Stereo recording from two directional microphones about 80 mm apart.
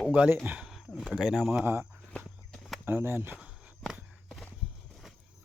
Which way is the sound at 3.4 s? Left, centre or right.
Centre.